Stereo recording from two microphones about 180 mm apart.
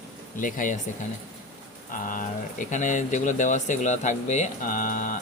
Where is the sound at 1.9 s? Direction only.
45° left (ahead or behind).